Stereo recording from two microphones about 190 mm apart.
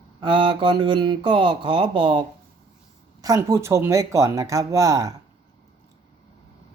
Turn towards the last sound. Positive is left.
turn(degrees=-15)  # may be behind; listen again after turning